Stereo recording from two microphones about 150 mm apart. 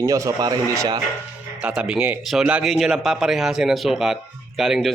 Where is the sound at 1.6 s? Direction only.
5° right (ahead or behind).